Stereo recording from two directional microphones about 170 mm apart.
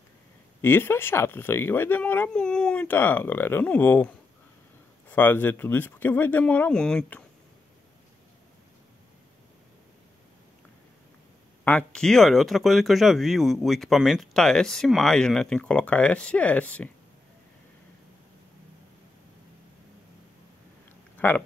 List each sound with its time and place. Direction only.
0.6 s speech: 15° left (ahead or behind)
11.6 s speech: 10° left (ahead or behind)
21.2 s speech: 10° left (ahead or behind)